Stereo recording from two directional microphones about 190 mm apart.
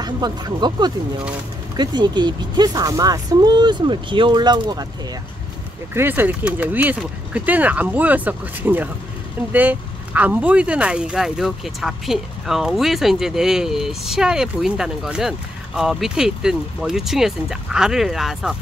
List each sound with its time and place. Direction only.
0.0 s speech: 20° right (ahead or behind)
5.9 s speech: 10° right (ahead or behind)